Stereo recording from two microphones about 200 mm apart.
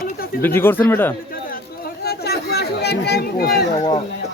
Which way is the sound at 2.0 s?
55° left (ahead or behind).